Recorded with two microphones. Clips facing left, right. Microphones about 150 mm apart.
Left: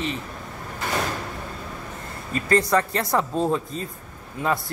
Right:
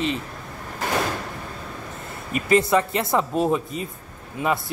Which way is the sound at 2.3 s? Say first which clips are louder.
Right 2 dB; 20° right (ahead or behind).